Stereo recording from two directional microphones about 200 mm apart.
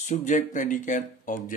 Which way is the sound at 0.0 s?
40° left (ahead or behind).